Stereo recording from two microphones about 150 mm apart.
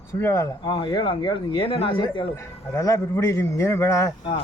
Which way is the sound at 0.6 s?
30° left (ahead or behind).